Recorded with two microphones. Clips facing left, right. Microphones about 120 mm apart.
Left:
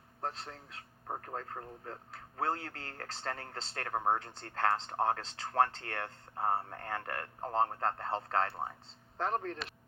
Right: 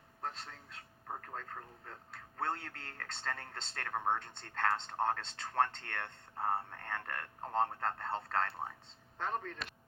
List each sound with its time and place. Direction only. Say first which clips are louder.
0.2 s a man's voice: left 3 dB; 35° left (ahead or behind)